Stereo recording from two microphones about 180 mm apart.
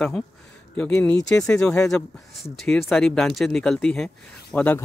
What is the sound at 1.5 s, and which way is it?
Speech, 5° left (ahead or behind).